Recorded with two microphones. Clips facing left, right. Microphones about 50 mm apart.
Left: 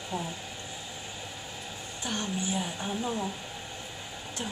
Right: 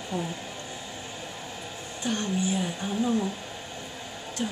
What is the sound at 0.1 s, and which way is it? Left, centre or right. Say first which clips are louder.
Speech: right 3 dB; centre.